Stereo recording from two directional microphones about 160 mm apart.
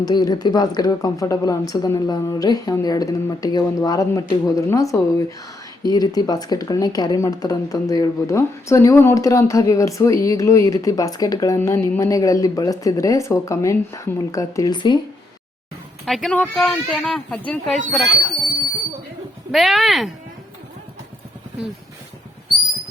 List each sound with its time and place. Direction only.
0.0 s speech: 25° left (ahead or behind)
16.0 s a woman's voice: centre (ahead or behind)
19.5 s a woman's voice: centre (ahead or behind)